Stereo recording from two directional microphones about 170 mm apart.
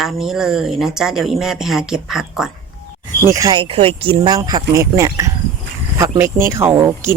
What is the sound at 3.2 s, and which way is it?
Speech, 20° right (ahead or behind).